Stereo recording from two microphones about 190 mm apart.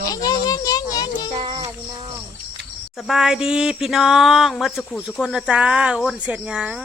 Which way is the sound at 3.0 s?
Centre (ahead or behind).